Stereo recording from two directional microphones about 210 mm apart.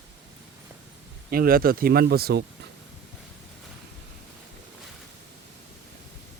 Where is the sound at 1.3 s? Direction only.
45° right (ahead or behind).